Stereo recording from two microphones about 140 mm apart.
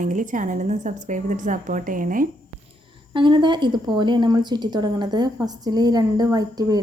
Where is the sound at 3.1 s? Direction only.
35° right (ahead or behind).